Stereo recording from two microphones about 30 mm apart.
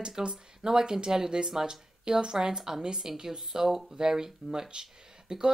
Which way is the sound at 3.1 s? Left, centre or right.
Centre.